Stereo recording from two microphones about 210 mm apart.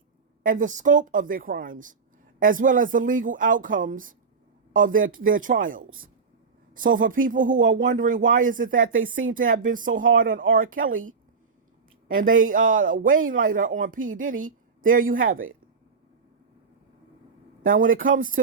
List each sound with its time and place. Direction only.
0.4 s speech: 40° right (ahead or behind)
17.7 s speech: 40° right (ahead or behind)